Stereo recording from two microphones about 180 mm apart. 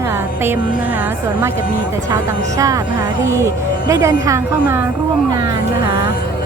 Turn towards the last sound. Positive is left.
turn(degrees=-20)  # may be behind; listen again after turning